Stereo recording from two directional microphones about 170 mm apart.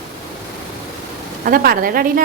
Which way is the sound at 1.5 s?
60° right (ahead or behind).